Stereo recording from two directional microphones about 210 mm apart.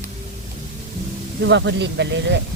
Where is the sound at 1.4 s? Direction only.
60° right (ahead or behind).